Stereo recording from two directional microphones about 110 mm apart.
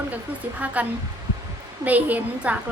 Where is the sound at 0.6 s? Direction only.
15° right (ahead or behind).